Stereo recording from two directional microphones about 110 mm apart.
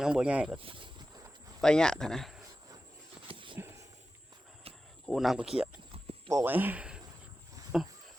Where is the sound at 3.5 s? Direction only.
25° right (ahead or behind).